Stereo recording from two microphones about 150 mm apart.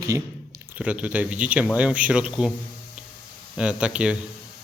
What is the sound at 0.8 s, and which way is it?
Speech, 10° right (ahead or behind).